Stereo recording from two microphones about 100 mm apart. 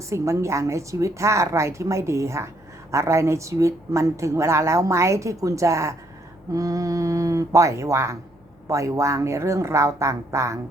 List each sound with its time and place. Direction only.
0.0 s a woman's voice: 30° right (ahead or behind)